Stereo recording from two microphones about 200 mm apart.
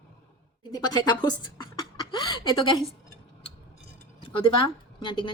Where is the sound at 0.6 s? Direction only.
20° left (ahead or behind).